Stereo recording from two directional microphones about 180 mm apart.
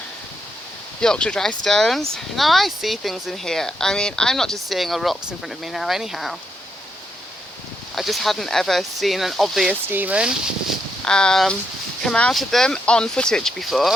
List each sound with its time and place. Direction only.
1.0 s speech: 5° left (ahead or behind)
7.9 s speech: centre (ahead or behind)
11.0 s speech: 5° left (ahead or behind)